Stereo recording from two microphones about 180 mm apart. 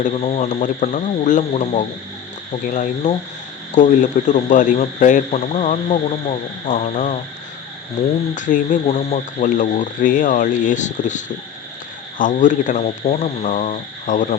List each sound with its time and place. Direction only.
0.0 s speech: 35° left (ahead or behind)
8.4 s speech: 45° left (ahead or behind)